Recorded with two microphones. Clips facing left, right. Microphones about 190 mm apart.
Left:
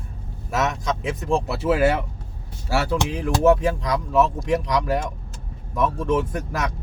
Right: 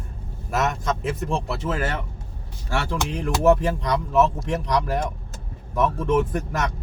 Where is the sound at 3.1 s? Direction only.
Centre (ahead or behind).